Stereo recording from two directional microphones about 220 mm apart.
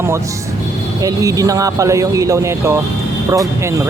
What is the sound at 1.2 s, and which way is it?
Speech, 15° right (ahead or behind).